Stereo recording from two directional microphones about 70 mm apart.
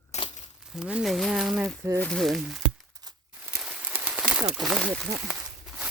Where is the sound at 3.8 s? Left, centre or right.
Right.